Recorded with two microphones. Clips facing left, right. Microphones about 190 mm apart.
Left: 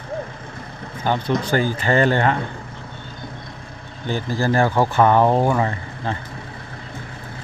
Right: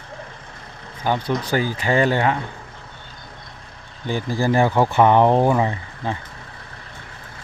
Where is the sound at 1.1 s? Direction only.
10° right (ahead or behind).